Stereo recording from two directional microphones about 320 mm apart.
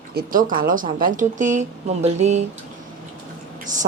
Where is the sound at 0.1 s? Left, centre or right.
Right.